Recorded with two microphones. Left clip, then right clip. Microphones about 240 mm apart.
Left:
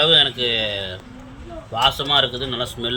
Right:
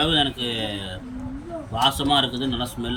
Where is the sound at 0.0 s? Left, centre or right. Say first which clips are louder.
Left 6 dB; centre.